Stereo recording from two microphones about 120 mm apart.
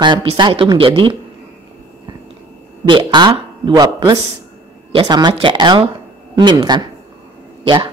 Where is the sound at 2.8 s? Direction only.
40° right (ahead or behind).